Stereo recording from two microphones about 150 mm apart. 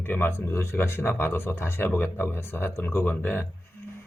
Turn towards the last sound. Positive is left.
turn(degrees=15)  # may be behind; listen again after turning